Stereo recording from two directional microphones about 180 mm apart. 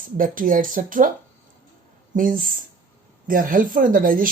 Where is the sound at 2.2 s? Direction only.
50° right (ahead or behind).